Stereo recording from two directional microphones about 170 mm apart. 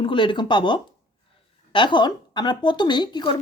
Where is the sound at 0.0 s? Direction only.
30° left (ahead or behind).